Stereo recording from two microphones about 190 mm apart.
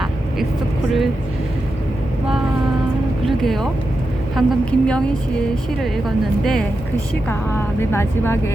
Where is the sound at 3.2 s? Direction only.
Centre (ahead or behind).